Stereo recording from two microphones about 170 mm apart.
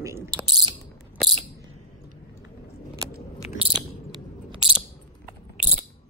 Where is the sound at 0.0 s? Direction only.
15° right (ahead or behind).